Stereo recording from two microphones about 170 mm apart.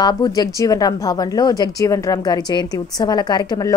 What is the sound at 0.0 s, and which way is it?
A woman's voice, 25° left (ahead or behind).